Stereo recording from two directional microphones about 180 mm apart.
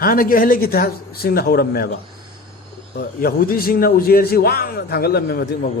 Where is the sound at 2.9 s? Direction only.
55° left (ahead or behind).